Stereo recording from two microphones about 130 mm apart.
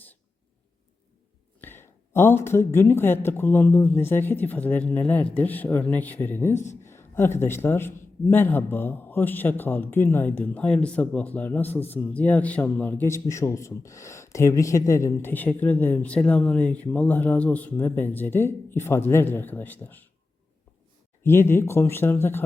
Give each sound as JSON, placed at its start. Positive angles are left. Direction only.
{"t": 1.6, "sound": "a man's voice", "side_deg": 15}
{"t": 21.2, "sound": "speech", "side_deg": 20}